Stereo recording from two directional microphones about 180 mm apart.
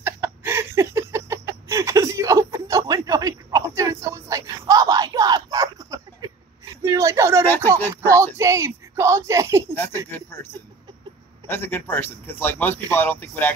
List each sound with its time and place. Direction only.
0.0 s a sound: 10° right (ahead or behind)
7.9 s speech: 15° right (ahead or behind)
9.8 s speech: 10° left (ahead or behind)